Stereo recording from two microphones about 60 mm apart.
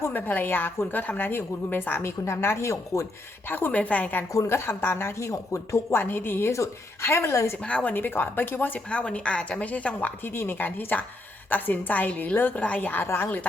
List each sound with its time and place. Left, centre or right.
0.1 s a woman's voice: left
3.7 s speech: left
4.4 s speech: left
5.9 s a woman's voice: left
6.5 s speech: left
7.6 s speech: left
7.9 s a woman's voice: left
8.9 s speech: centre
10.2 s a woman's voice: left